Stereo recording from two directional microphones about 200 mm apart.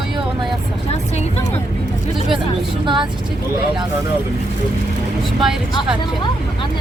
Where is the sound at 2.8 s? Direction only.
25° right (ahead or behind).